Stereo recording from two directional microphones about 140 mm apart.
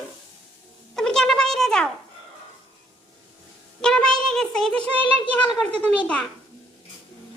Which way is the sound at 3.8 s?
5° left (ahead or behind).